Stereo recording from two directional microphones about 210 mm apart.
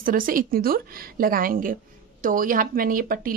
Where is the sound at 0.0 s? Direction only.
40° right (ahead or behind).